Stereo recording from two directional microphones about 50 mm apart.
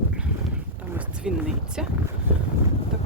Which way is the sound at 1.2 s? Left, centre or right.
Centre.